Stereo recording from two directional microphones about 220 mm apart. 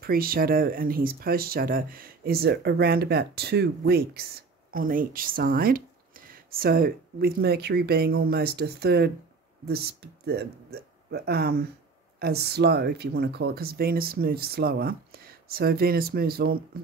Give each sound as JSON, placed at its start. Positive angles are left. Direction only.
{"t": 0.0, "sound": "speech", "side_deg": -40}